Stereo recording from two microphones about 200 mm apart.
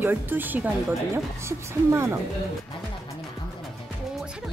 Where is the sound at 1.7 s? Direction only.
15° right (ahead or behind).